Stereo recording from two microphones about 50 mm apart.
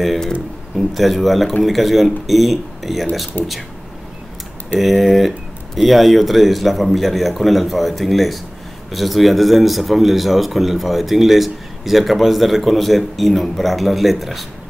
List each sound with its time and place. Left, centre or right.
0.7 s speech: centre
3.4 s speech: left
4.7 s speech: centre